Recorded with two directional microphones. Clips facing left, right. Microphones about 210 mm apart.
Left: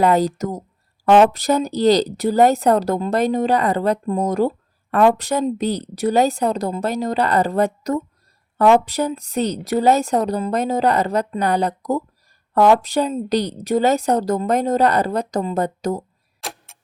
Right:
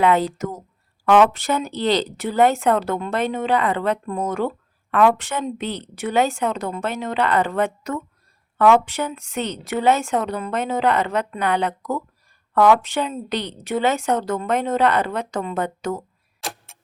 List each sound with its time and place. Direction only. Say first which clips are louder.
0.0 s speech: left 2 dB; 40° left (ahead or behind)
16.4 s clock: even; centre (ahead or behind)